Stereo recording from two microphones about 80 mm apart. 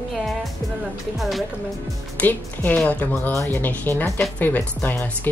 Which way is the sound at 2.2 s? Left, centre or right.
Left.